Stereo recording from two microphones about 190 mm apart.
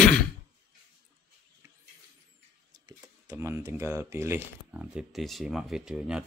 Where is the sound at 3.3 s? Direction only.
10° right (ahead or behind).